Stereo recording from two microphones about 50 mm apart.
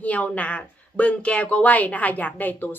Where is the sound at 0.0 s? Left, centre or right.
Left.